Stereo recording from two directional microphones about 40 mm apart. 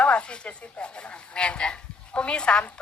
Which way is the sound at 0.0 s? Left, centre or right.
Left.